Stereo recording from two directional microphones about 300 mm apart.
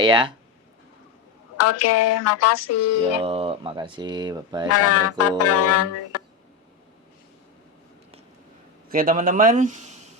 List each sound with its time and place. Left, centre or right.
0.0 s speech: centre
1.5 s speech: left
3.2 s speech: centre
4.7 s music: left
8.9 s a man's voice: right